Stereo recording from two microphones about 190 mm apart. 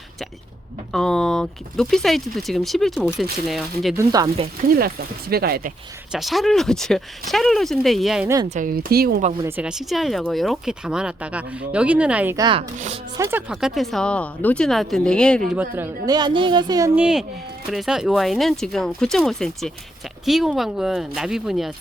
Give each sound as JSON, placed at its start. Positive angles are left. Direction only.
{"t": 0.9, "sound": "speech", "side_deg": 5}
{"t": 3.9, "sound": "speech", "side_deg": -20}
{"t": 4.7, "sound": "speech", "side_deg": -55}
{"t": 6.1, "sound": "speech", "side_deg": 0}
{"t": 8.4, "sound": "speech", "side_deg": -45}
{"t": 9.4, "sound": "speech", "side_deg": -10}
{"t": 12.4, "sound": "speech", "side_deg": -25}
{"t": 13.1, "sound": "speech", "side_deg": -15}
{"t": 13.5, "sound": "speech", "side_deg": -5}
{"t": 15.7, "sound": "speech", "side_deg": -15}
{"t": 17.0, "sound": "speech", "side_deg": -5}